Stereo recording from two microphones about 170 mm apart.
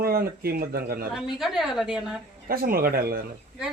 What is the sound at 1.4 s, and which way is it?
Speech, centre (ahead or behind).